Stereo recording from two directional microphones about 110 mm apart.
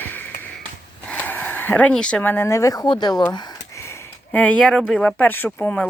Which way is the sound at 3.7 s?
25° left (ahead or behind).